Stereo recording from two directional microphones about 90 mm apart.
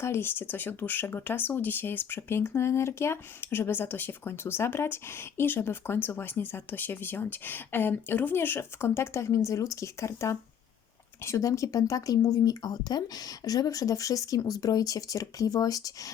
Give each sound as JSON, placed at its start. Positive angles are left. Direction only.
{"t": 0.0, "sound": "speech", "side_deg": 25}